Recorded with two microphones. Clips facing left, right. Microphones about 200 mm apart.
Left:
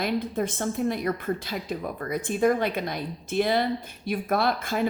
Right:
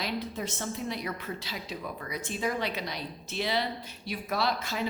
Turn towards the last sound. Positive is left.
turn(degrees=50)  # may be behind; listen again after turning